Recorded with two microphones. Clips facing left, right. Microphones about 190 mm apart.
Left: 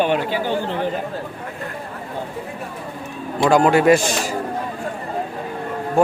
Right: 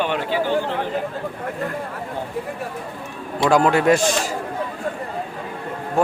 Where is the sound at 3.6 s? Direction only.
5° left (ahead or behind).